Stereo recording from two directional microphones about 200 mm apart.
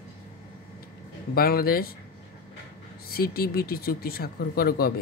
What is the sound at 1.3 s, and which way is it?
Speech, 50° left (ahead or behind).